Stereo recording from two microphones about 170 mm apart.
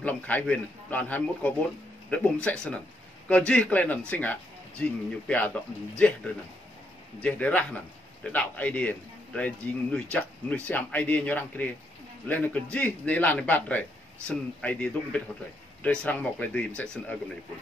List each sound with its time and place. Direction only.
0.0 s a man's voice: 10° left (ahead or behind)
7.2 s a man's voice: 10° left (ahead or behind)